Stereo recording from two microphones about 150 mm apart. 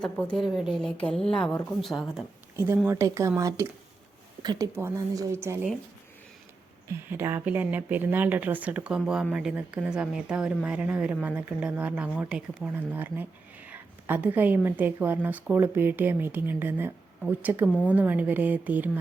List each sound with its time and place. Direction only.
0.0 s a woman's voice: 5° left (ahead or behind)
2.9 s a woman's voice: 20° right (ahead or behind)
6.8 s speech: 15° right (ahead or behind)